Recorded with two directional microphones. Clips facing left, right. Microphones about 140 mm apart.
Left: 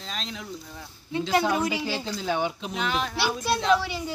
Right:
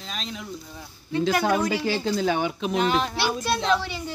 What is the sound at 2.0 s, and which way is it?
Speech, 55° right (ahead or behind).